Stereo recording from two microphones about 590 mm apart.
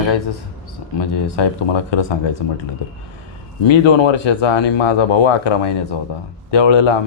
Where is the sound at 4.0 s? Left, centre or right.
Left.